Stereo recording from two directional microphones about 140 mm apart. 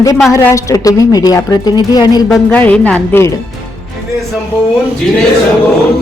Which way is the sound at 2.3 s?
10° left (ahead or behind).